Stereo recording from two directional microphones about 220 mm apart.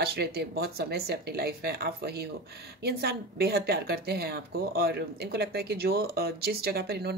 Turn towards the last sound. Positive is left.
turn(degrees=-45)  # may be behind; listen again after turning